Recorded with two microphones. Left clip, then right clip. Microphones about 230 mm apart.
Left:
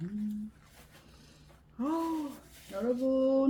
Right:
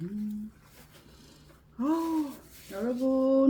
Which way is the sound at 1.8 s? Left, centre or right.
Centre.